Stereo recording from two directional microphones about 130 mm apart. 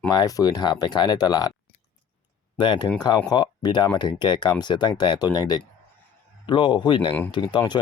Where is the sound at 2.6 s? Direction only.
35° left (ahead or behind).